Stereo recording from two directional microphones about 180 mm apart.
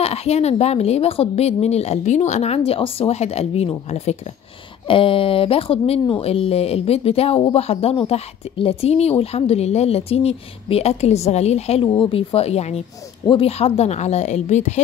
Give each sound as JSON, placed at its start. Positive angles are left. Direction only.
{"t": 0.0, "sound": "speech", "side_deg": 35}